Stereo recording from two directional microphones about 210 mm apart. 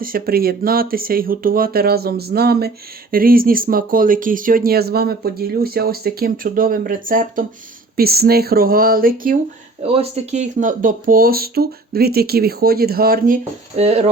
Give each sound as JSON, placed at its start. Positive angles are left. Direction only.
{"t": 0.0, "sound": "speech", "side_deg": -45}
{"t": 9.8, "sound": "speech", "side_deg": -30}